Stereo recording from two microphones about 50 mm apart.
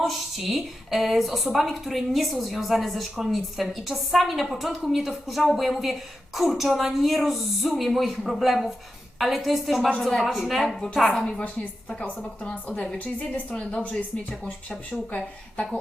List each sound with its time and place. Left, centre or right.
0.0 s a woman's voice: centre
11.1 s a woman's voice: centre
12.5 s speech: left